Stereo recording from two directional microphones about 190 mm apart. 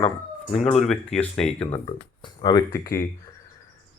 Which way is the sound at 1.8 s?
25° left (ahead or behind).